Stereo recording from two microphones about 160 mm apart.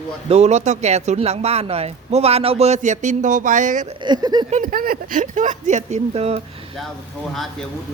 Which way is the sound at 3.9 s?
25° right (ahead or behind).